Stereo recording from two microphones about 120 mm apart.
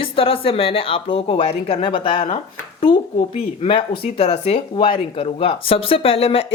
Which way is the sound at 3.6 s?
50° left (ahead or behind).